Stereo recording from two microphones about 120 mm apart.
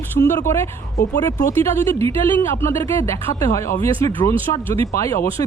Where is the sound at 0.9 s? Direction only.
90° left.